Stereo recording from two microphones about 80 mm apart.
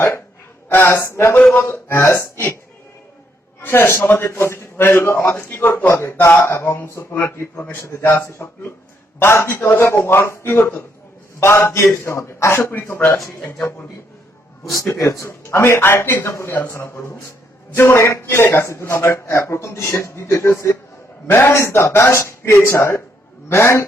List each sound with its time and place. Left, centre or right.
0.7 s a man's voice: left
1.4 s a man's voice: centre
1.6 s a man's voice: left
3.6 s a man's voice: left
14.9 s a man's voice: left
16.5 s a man's voice: left